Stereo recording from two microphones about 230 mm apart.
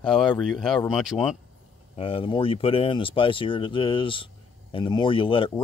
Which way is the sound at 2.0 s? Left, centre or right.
Left.